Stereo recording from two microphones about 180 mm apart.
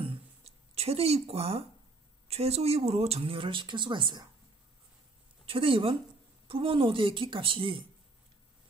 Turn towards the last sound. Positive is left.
turn(degrees=-30)  # may be behind; listen again after turning